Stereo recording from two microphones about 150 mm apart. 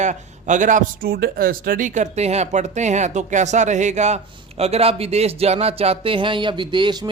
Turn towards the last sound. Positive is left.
turn(degrees=-30)  # may be behind; listen again after turning